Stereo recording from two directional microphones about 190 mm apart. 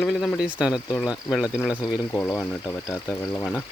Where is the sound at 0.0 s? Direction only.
Centre (ahead or behind).